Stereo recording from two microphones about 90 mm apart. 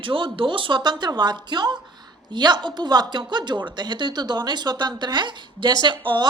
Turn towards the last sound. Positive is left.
turn(degrees=-70)  # may be behind; listen again after turning